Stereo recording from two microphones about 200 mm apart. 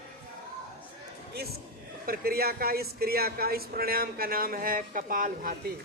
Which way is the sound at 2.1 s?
50° right (ahead or behind).